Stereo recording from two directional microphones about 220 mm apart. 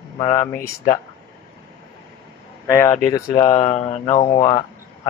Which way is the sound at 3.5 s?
30° left (ahead or behind).